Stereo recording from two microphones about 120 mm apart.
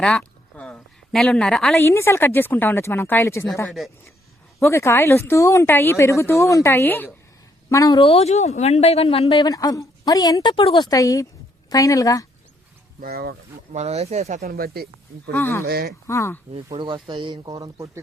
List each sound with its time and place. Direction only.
0.0 s a sound: 5° left (ahead or behind)
1.7 s speech: 20° left (ahead or behind)
3.7 s speech: centre (ahead or behind)
4.6 s speech: 20° left (ahead or behind)
7.7 s speech: 30° left (ahead or behind)
7.9 s speech: 50° left (ahead or behind)
9.4 s speech: 30° left (ahead or behind)
10.5 s a woman's voice: 50° left (ahead or behind)
10.8 s speech: 30° left (ahead or behind)
13.7 s speech: 65° right (ahead or behind)
15.3 s speech: 20° left (ahead or behind)
16.7 s speech: 45° right (ahead or behind); by 18.0 s 25° right (ahead or behind)